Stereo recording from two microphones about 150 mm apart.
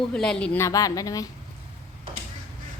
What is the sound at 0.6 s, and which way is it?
Speech, 25° left (ahead or behind).